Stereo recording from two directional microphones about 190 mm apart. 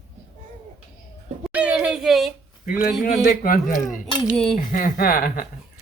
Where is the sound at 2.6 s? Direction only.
50° left (ahead or behind).